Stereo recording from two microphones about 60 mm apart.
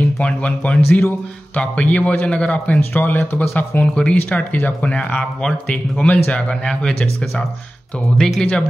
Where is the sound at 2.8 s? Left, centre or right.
Left.